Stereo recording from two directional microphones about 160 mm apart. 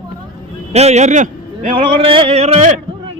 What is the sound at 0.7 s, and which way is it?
Speech, 40° right (ahead or behind).